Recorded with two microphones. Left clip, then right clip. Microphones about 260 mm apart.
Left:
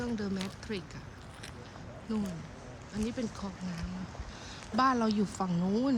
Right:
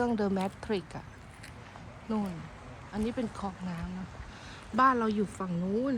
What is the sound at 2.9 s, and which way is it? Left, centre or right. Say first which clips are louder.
Speech: right 3 dB; centre.